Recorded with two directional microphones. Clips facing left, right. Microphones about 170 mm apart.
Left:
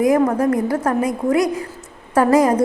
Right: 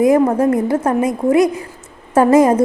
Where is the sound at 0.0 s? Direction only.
25° right (ahead or behind).